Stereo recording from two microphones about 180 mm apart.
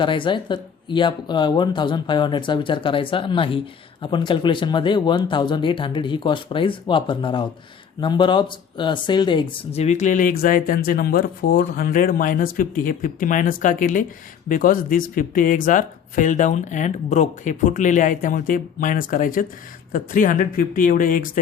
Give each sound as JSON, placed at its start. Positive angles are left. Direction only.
{"t": 0.0, "sound": "speech", "side_deg": 25}